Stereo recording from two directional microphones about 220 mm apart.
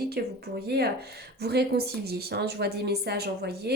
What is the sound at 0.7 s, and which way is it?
A woman's voice, 45° right (ahead or behind).